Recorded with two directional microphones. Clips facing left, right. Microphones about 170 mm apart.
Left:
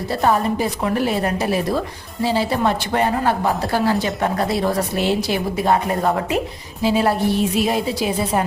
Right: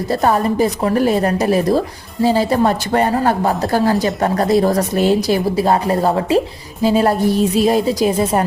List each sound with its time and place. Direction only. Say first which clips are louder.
0.1 s a woman's voice: right 2 dB; 40° right (ahead or behind)